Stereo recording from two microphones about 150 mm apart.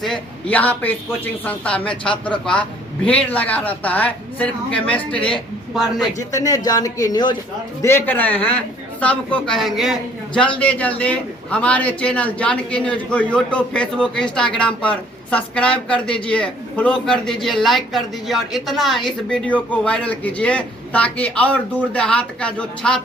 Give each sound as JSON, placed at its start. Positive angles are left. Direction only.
{"t": 0.0, "sound": "speech", "side_deg": 5}
{"t": 6.1, "sound": "a man's voice", "side_deg": 20}
{"t": 7.8, "sound": "speech", "side_deg": 15}